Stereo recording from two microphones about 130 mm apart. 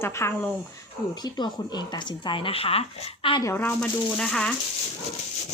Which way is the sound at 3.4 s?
20° left (ahead or behind).